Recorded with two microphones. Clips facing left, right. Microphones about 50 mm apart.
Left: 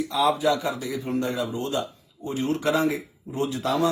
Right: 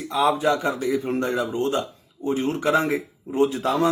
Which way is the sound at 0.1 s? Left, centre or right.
Right.